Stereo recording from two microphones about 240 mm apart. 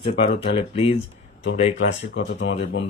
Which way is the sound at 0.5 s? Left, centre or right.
Left.